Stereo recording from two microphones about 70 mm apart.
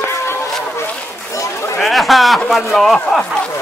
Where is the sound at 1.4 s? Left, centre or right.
Left.